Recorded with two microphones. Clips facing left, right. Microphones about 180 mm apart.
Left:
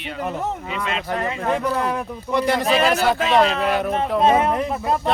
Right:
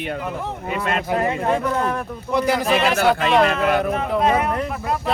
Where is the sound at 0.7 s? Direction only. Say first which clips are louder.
Right 7 dB; 50° right (ahead or behind).